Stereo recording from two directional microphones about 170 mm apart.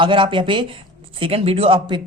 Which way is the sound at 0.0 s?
30° right (ahead or behind).